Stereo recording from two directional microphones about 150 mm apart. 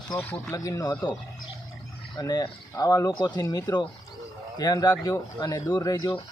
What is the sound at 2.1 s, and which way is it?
Speech, 25° left (ahead or behind).